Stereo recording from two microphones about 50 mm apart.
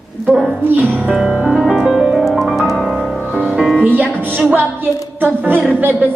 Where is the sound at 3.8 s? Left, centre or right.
Right.